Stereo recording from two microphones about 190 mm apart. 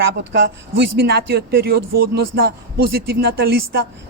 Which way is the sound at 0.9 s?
55° right (ahead or behind).